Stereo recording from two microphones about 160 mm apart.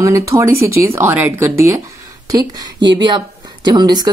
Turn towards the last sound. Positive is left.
turn(degrees=-25)  # may be behind; listen again after turning